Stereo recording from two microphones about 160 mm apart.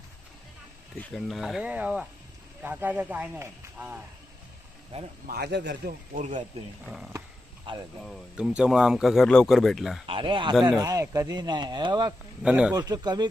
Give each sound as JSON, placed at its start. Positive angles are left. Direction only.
{"t": 0.9, "sound": "speech", "side_deg": 0}
{"t": 4.9, "sound": "speech", "side_deg": -35}
{"t": 5.3, "sound": "a man's voice", "side_deg": -90}
{"t": 6.1, "sound": "speech", "side_deg": -50}
{"t": 6.8, "sound": "speech", "side_deg": -5}
{"t": 7.7, "sound": "speech", "side_deg": -30}
{"t": 8.4, "sound": "speech", "side_deg": -5}
{"t": 10.1, "sound": "speech", "side_deg": -30}
{"t": 12.4, "sound": "speech", "side_deg": -5}
{"t": 12.7, "sound": "speech", "side_deg": -25}